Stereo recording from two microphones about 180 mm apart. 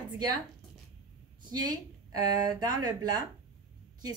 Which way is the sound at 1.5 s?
25° right (ahead or behind).